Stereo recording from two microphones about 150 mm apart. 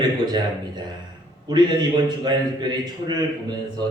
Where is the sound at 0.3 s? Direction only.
30° right (ahead or behind).